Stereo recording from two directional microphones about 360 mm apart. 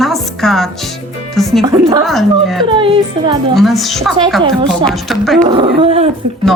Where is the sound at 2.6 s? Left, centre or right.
Centre.